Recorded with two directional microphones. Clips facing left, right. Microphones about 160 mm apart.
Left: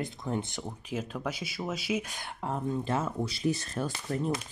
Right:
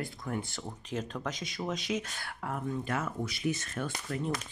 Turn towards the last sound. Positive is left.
turn(degrees=35)  # may be behind; listen again after turning